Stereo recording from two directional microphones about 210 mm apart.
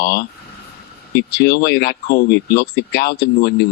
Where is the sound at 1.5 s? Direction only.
50° left (ahead or behind).